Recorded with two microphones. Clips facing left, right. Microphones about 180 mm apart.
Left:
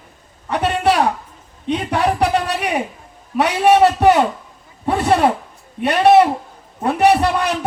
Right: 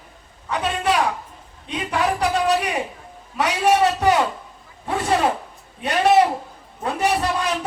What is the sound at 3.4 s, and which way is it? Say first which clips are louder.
Speech: left 5 dB; 65° left (ahead or behind).